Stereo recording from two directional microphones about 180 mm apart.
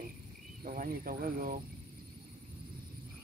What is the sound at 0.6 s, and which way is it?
Speech, 50° right (ahead or behind).